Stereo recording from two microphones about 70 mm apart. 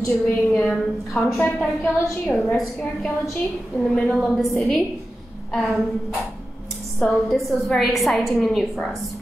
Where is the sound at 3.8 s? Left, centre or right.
Centre.